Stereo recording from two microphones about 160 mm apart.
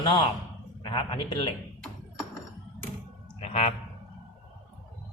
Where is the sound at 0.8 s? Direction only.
30° left (ahead or behind).